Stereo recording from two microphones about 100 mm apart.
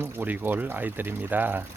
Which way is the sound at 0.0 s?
20° right (ahead or behind).